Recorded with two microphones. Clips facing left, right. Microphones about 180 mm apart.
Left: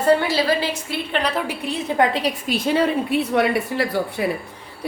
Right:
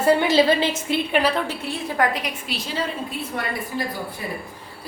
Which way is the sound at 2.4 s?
50° left (ahead or behind).